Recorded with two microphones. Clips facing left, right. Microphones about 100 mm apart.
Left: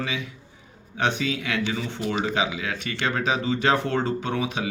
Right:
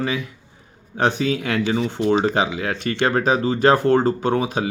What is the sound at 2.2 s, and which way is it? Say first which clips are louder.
Speech: right 5 dB; 45° right (ahead or behind).